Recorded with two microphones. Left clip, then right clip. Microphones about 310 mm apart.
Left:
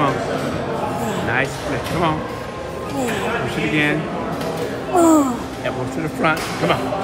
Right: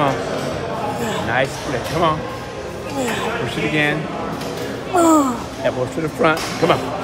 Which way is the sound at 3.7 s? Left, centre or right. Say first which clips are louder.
Even; right.